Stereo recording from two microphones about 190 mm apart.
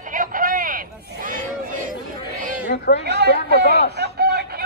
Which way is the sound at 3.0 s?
60° right (ahead or behind).